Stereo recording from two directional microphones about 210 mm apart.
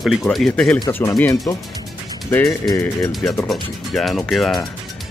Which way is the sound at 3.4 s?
Centre (ahead or behind).